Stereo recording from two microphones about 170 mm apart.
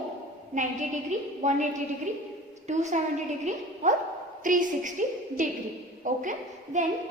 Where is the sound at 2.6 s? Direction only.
45° right (ahead or behind).